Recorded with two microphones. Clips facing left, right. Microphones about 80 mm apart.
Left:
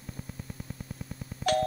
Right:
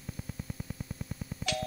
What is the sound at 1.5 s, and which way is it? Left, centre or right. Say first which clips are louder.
Music: left 9 dB; left.